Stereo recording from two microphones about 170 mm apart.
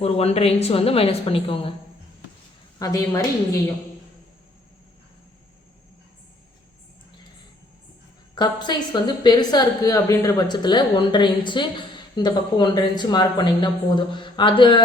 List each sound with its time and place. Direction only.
0.0 s a woman's voice: 35° left (ahead or behind)
2.7 s a woman's voice: 20° left (ahead or behind)
8.4 s a woman's voice: 25° left (ahead or behind)